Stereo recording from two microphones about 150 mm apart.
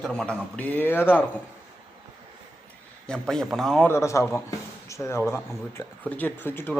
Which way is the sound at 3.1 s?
5° left (ahead or behind).